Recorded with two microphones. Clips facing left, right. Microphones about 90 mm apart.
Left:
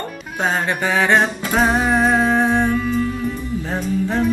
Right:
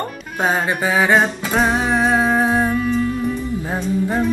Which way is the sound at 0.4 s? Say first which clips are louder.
Right 1 dB; 10° right (ahead or behind).